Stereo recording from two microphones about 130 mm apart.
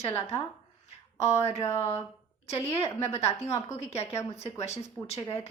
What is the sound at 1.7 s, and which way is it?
A woman's voice, 50° left (ahead or behind).